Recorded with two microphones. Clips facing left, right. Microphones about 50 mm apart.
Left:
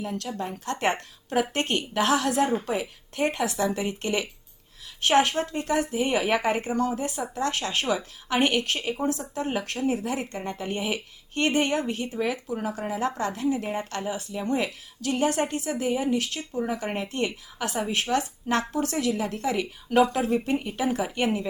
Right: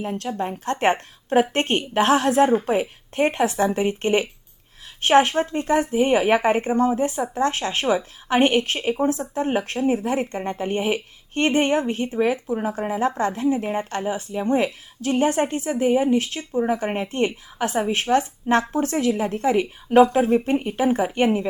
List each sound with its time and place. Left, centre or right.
0.0 s a woman's voice: right